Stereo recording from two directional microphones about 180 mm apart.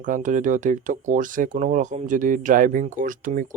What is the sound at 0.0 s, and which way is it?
Speech, 45° right (ahead or behind).